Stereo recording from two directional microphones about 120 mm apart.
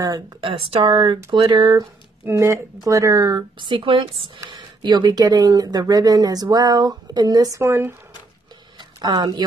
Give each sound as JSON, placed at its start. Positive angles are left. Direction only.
{"t": 0.4, "sound": "speech", "side_deg": -45}
{"t": 2.2, "sound": "speech", "side_deg": -25}
{"t": 8.7, "sound": "a sound", "side_deg": -35}